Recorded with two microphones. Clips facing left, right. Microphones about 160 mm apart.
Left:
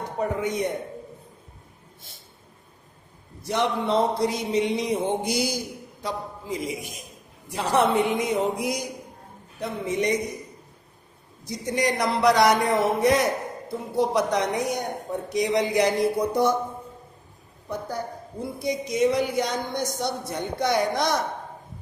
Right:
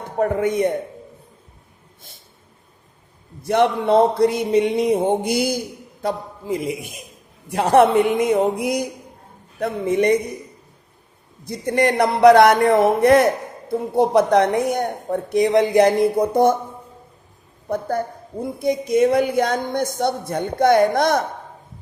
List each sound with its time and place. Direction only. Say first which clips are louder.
0.2 s a man's voice: right 7 dB; 55° right (ahead or behind)
3.4 s a man's voice: right 7 dB; 55° right (ahead or behind)
11.4 s a man's voice: right 6 dB; 55° right (ahead or behind)
17.7 s a woman's voice: right 8 dB; 55° right (ahead or behind)